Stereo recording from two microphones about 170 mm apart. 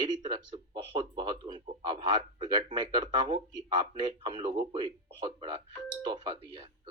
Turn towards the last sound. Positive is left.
turn(degrees=-25)  # may be behind; listen again after turning